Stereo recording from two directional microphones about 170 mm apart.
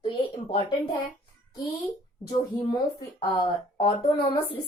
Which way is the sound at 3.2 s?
25° left (ahead or behind).